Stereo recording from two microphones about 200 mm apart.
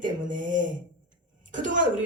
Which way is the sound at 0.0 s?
40° right (ahead or behind).